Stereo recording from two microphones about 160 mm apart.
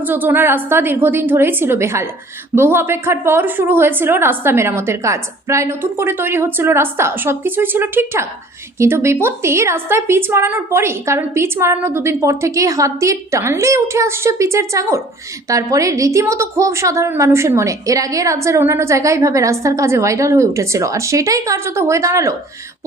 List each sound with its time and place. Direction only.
0.0 s a woman's voice: 10° right (ahead or behind)